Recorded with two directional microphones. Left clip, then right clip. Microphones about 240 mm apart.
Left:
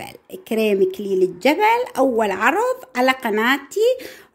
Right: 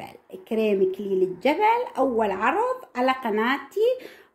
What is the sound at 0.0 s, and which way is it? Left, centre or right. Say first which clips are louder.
Speech: left 5 dB; left.